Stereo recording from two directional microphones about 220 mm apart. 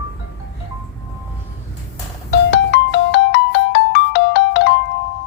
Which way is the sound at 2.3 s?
50° left (ahead or behind).